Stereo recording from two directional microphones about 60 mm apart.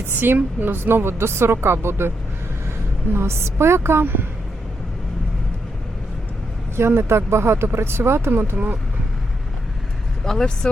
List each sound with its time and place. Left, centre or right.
0.2 s a woman's voice: right
6.7 s a woman's voice: right
8.5 s speech: right
10.2 s speech: centre